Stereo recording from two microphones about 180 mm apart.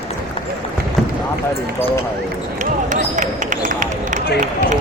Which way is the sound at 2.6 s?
45° right (ahead or behind).